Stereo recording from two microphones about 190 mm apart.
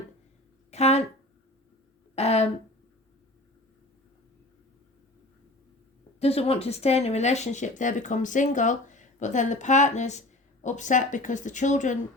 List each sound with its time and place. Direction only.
0.7 s a sound: 35° left (ahead or behind)
2.1 s speech: 35° left (ahead or behind)
6.1 s speech: 30° left (ahead or behind)